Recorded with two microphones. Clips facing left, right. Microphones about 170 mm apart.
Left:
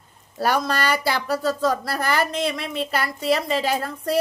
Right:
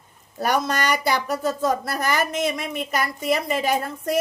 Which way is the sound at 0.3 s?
20° right (ahead or behind).